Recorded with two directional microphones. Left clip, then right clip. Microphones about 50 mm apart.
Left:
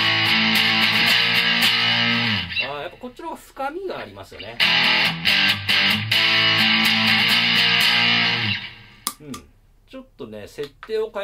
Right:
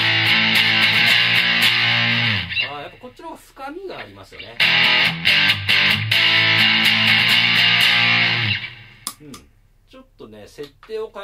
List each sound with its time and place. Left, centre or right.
0.0 s music: right
2.8 s speech: left
3.9 s music: right
9.1 s a sound: left
10.6 s speech: left